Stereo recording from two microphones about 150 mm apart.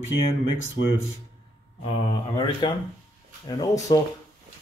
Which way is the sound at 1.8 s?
35° left (ahead or behind).